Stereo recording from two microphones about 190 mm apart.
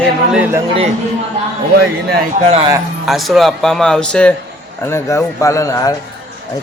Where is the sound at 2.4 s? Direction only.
30° right (ahead or behind).